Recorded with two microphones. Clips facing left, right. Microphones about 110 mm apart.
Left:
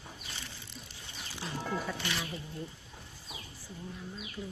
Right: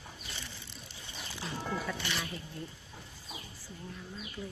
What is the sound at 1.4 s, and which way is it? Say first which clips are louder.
Music: left 1 dB; centre (ahead or behind).